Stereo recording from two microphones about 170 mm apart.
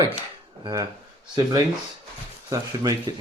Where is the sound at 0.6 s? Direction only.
20° right (ahead or behind).